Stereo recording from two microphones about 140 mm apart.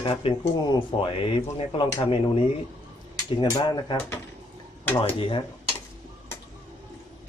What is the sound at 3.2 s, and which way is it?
Speech, 30° left (ahead or behind).